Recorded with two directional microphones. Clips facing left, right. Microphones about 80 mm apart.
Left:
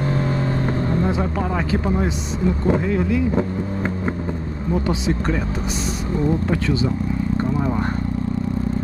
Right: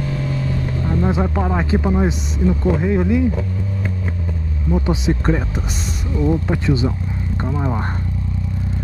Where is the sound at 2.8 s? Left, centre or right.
Centre.